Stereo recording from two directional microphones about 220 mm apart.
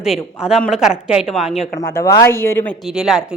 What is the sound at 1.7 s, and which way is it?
Speech, 15° left (ahead or behind).